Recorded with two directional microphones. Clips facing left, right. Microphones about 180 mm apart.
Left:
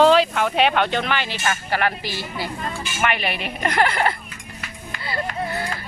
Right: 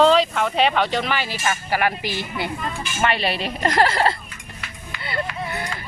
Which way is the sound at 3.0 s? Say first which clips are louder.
Right 2 dB; 30° right (ahead or behind).